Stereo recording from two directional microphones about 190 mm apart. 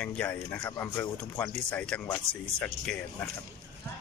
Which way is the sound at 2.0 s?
20° left (ahead or behind).